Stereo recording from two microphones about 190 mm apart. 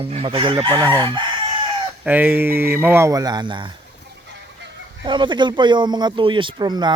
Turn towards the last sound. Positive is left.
turn(degrees=-20)  # may be behind; listen again after turning